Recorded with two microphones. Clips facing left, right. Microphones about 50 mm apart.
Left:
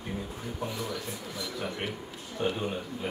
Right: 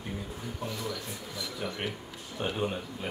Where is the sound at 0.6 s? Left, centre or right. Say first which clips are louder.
Left 1 dB; centre.